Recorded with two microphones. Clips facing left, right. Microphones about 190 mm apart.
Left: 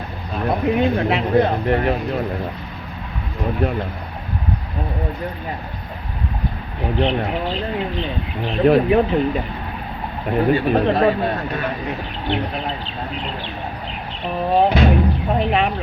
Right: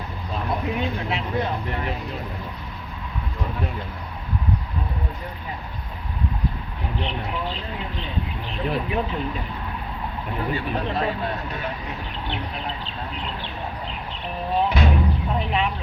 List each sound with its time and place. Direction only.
0.4 s speech: 65° left (ahead or behind)
3.6 s speech: 65° left (ahead or behind)
6.8 s speech: 75° left (ahead or behind)
14.5 s music: 75° left (ahead or behind)